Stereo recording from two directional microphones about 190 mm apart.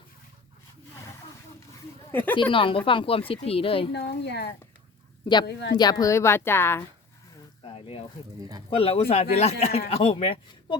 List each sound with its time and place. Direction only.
2.3 s speech: 25° left (ahead or behind)
3.9 s speech: 60° left (ahead or behind)
5.7 s a woman's voice: 20° left (ahead or behind)
7.6 s speech: 30° left (ahead or behind)